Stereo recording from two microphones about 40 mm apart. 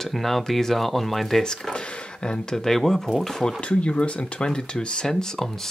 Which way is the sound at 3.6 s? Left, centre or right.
Left.